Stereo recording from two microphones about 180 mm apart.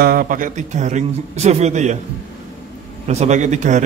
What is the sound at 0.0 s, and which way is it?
A man's voice, 55° right (ahead or behind).